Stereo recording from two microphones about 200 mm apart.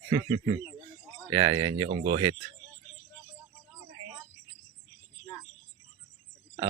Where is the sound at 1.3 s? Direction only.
20° right (ahead or behind).